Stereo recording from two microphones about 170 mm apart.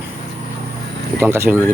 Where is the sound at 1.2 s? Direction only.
15° right (ahead or behind).